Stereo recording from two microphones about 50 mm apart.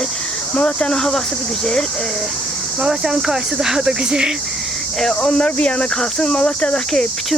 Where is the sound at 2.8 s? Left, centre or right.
Centre.